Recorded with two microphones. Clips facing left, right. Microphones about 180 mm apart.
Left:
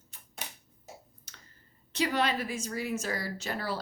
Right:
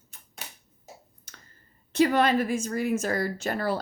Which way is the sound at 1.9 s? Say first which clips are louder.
Right 8 dB; 50° right (ahead or behind).